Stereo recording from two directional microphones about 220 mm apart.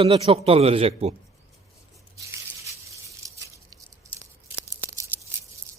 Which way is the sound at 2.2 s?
15° right (ahead or behind).